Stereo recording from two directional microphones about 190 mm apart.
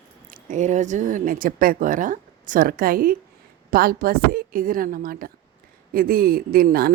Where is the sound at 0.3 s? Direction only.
45° right (ahead or behind).